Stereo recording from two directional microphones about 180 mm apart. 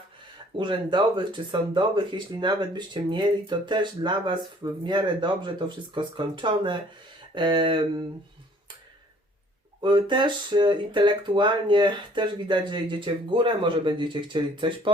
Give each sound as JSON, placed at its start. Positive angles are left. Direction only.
{"t": 0.6, "sound": "speech", "side_deg": -25}
{"t": 9.8, "sound": "speech", "side_deg": -25}